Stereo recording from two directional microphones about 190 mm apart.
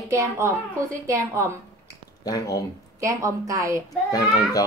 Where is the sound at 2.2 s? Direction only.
20° left (ahead or behind).